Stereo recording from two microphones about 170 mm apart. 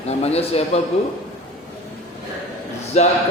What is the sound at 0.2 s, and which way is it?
Speech, 35° left (ahead or behind).